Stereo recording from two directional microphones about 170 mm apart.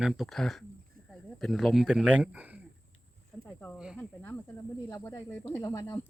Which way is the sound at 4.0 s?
10° left (ahead or behind).